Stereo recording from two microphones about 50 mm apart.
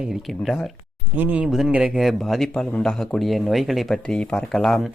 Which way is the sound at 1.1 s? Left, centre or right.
Right.